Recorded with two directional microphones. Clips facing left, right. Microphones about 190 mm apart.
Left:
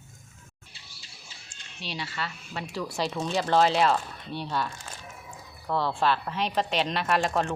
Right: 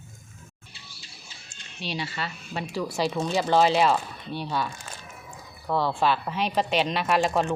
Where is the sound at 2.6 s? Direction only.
5° right (ahead or behind).